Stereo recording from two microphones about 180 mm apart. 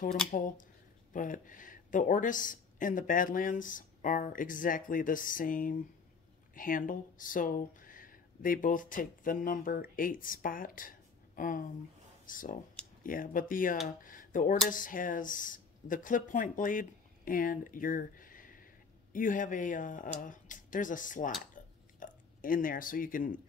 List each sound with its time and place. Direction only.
0.3 s speech: 45° left (ahead or behind)
21.6 s burping: 45° left (ahead or behind)
22.0 s speech: 50° left (ahead or behind)